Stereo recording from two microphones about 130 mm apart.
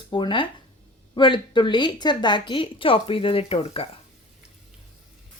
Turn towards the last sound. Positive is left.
turn(degrees=45)  # may be behind; listen again after turning